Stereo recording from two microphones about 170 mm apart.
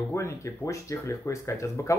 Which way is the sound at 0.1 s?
15° left (ahead or behind).